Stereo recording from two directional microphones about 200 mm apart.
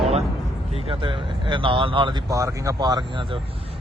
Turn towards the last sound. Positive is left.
turn(degrees=-25)  # may be behind; listen again after turning